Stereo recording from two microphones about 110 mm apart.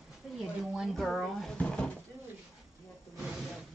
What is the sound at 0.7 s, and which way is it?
A woman's voice, centre (ahead or behind).